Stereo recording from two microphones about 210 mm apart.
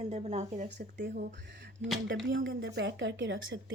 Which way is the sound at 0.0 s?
30° right (ahead or behind).